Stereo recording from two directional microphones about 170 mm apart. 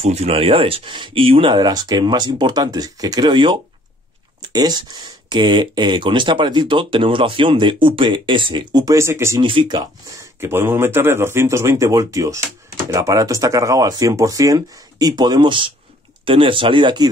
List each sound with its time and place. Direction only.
0.0 s speech: 35° right (ahead or behind); by 9.4 s 15° right (ahead or behind)
9.4 s speech: 30° right (ahead or behind)
10.4 s speech: 15° right (ahead or behind)